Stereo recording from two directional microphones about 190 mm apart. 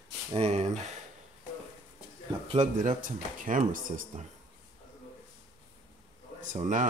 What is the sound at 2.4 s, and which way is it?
Speech, 30° right (ahead or behind).